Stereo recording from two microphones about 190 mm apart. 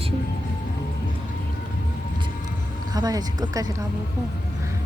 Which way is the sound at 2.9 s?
20° right (ahead or behind).